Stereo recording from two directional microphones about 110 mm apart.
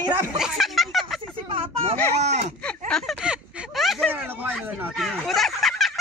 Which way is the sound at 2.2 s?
90° right.